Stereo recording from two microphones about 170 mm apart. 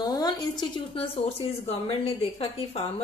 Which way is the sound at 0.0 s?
25° left (ahead or behind).